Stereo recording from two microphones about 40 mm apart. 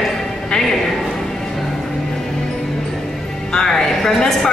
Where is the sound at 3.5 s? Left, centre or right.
Centre.